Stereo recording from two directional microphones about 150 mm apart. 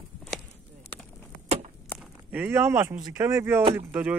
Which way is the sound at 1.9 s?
10° right (ahead or behind).